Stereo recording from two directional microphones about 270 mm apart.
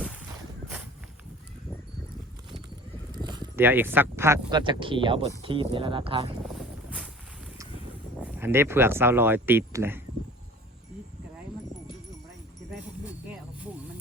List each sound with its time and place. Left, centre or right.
3.2 s speech: centre
8.2 s speech: centre